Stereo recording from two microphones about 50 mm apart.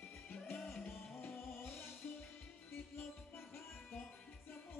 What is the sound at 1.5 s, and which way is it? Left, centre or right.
Music, left.